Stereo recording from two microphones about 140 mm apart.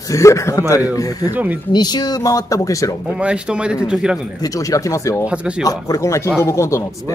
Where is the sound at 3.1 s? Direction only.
5° right (ahead or behind).